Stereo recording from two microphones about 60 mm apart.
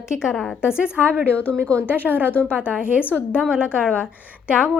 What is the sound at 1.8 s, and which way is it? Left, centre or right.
Speech, right.